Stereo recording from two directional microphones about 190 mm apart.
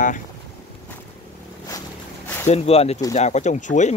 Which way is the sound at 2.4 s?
35° left (ahead or behind).